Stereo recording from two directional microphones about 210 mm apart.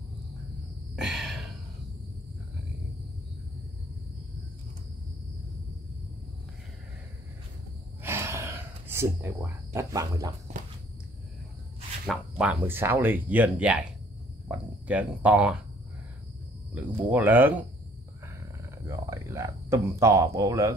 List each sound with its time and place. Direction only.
0.9 s a sound: 5° right (ahead or behind)
8.0 s gasp: 10° right (ahead or behind)
12.1 s speech: 5° right (ahead or behind)
16.7 s speech: 10° right (ahead or behind)
18.9 s speech: 15° right (ahead or behind)